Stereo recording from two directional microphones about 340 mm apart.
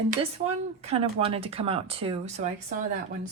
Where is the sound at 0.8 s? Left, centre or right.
Centre.